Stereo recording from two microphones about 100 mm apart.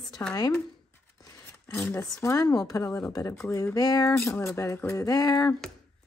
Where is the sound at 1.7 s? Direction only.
25° left (ahead or behind).